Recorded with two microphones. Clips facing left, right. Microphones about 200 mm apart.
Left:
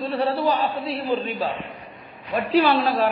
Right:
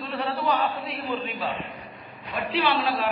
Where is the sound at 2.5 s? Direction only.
40° left (ahead or behind).